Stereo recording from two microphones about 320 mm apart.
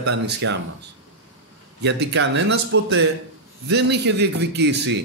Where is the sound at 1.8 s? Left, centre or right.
Right.